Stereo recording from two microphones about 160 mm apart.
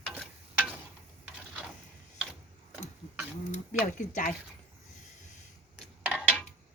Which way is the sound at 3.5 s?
50° left (ahead or behind).